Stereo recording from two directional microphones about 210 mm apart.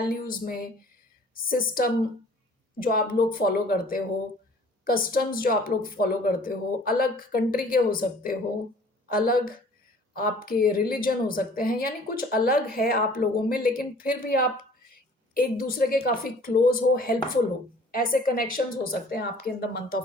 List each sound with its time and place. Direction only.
0.1 s a woman's voice: 45° left (ahead or behind)